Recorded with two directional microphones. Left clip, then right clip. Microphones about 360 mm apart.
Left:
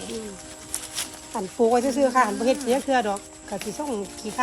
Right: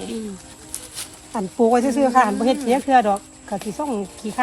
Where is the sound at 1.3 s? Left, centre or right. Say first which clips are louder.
Right 3 dB; centre.